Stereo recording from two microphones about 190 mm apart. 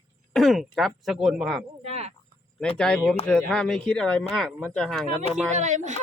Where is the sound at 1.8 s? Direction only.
35° right (ahead or behind).